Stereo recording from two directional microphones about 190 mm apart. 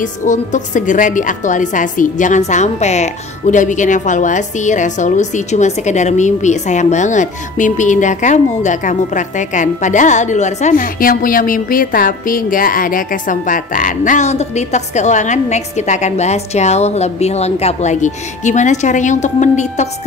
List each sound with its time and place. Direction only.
0.0 s a woman's voice: 40° left (ahead or behind)